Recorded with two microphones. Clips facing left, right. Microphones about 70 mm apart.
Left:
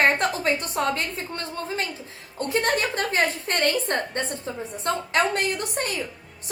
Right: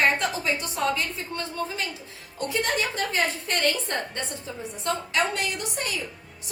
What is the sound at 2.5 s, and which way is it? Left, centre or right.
A woman's voice, left.